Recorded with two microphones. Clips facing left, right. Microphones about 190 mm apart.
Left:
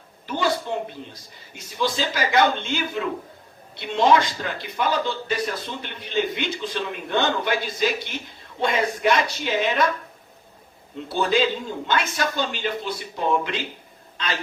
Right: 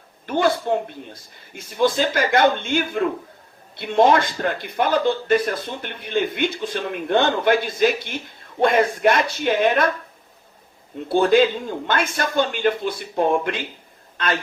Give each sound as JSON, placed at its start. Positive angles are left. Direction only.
{"t": 0.3, "sound": "a man's voice", "side_deg": -55}
{"t": 11.1, "sound": "a man's voice", "side_deg": -55}